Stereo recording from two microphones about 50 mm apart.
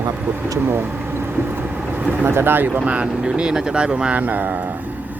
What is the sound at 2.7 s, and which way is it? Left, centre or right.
Speech, right.